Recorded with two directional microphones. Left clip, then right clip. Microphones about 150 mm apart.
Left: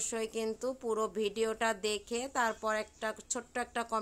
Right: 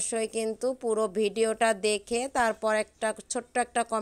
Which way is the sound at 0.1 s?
30° right (ahead or behind).